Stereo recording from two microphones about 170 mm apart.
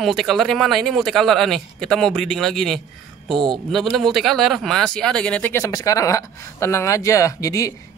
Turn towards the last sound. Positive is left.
turn(degrees=20)  # may be behind; listen again after turning